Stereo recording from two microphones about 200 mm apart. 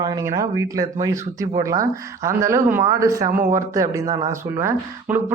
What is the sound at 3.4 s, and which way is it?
Speech, 45° right (ahead or behind).